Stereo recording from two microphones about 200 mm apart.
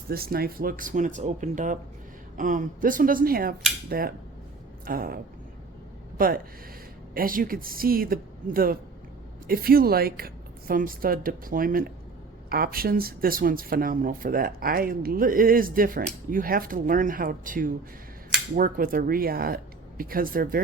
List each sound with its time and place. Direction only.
0.1 s speech: 50° right (ahead or behind)